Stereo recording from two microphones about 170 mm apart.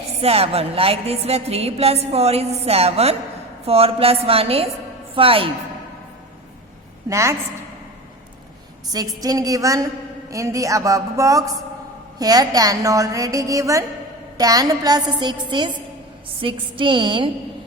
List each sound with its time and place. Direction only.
0.2 s a woman's voice: 35° right (ahead or behind)
7.1 s a woman's voice: 15° right (ahead or behind)
8.9 s a woman's voice: 20° right (ahead or behind)